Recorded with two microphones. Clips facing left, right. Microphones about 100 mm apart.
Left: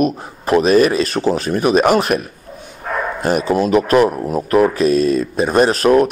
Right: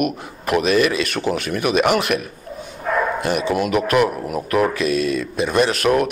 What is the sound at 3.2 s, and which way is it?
Speech, 40° left (ahead or behind).